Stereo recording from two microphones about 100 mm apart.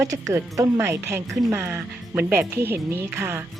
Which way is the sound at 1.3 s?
Centre (ahead or behind).